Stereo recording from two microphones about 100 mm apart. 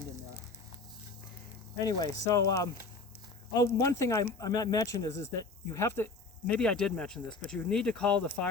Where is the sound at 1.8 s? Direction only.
35° left (ahead or behind).